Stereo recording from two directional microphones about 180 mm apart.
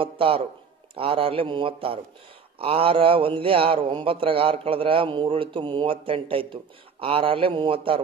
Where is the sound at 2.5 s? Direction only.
30° right (ahead or behind).